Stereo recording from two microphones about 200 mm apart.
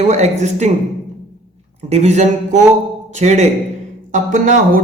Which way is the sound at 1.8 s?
30° right (ahead or behind).